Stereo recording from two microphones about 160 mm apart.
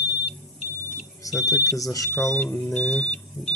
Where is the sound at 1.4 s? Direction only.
20° left (ahead or behind).